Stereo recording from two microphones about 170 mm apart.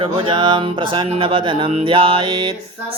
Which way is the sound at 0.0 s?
30° right (ahead or behind).